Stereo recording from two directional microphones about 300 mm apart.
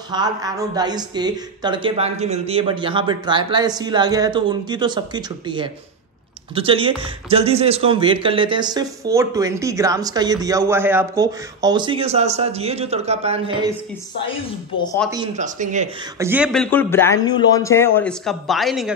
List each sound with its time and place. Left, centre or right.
0.1 s speech: centre
15.3 s speech: right
16.2 s a man's voice: centre